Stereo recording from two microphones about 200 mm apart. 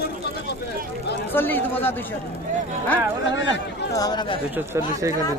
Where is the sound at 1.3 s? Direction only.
10° left (ahead or behind).